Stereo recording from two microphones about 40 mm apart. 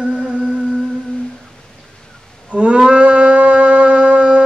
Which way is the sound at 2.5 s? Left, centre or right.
Right.